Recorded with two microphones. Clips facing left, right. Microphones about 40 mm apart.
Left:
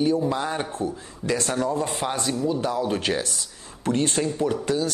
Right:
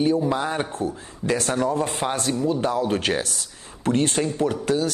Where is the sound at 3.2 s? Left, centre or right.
Right.